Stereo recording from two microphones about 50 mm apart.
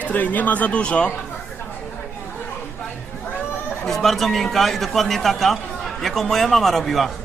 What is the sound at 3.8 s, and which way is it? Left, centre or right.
A man's voice, centre.